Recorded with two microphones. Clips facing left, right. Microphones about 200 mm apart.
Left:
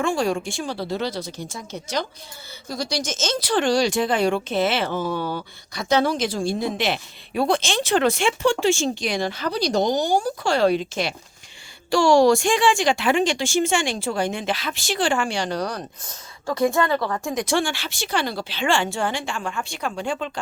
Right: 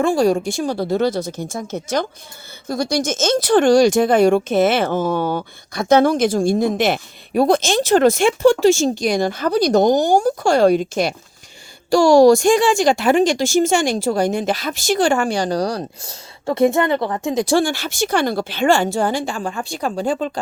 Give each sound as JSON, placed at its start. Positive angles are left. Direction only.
{"t": 0.0, "sound": "speech", "side_deg": -35}
{"t": 17.4, "sound": "speech", "side_deg": -35}